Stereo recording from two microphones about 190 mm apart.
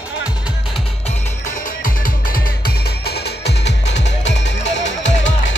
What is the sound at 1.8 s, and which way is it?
Music, 50° left (ahead or behind).